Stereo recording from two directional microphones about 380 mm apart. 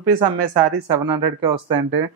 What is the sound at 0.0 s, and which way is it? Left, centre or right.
Speech, right.